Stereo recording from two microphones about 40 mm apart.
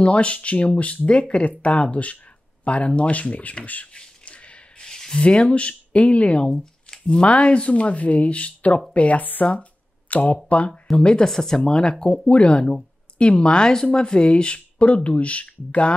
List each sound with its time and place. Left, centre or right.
0.0 s speech: left
3.9 s a sound: left
4.8 s a sound: centre
5.2 s speech: left
6.6 s shuffling cards: left
7.2 s speech: left
11.2 s speech: centre; by 15.9 s left